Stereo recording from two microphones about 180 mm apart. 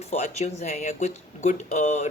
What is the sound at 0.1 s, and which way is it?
Speech, 40° left (ahead or behind).